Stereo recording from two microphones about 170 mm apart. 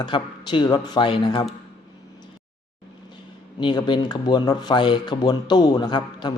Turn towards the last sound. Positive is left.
turn(degrees=25)  # may be behind; listen again after turning